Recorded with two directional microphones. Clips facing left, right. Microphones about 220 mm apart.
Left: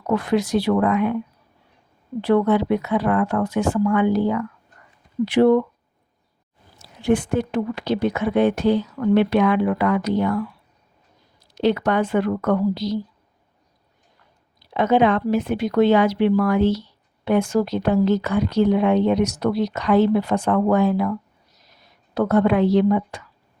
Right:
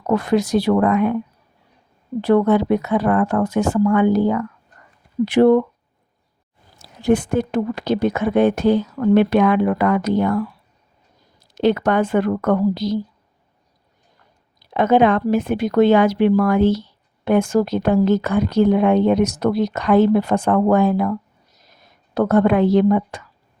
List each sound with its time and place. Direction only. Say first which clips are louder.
0.1 s speech: right 3 dB; 40° right (ahead or behind)
2.2 s speech: right 3 dB; 45° right (ahead or behind)
7.0 s speech: right 2 dB; 40° right (ahead or behind)
11.5 s speech: right 2 dB; 50° right (ahead or behind)
14.7 s speech: right 2 dB; 50° right (ahead or behind)